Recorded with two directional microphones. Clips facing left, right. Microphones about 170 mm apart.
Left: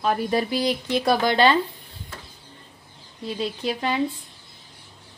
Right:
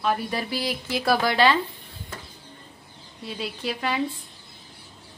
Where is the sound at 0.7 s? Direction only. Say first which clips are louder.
Even; 5° right (ahead or behind).